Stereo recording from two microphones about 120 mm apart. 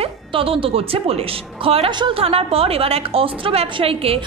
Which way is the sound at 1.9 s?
40° right (ahead or behind).